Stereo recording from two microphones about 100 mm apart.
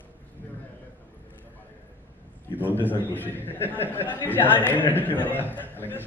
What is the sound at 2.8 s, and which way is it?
A man's voice, 20° left (ahead or behind).